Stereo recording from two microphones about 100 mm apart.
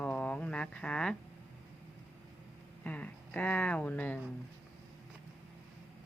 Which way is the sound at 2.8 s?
15° left (ahead or behind).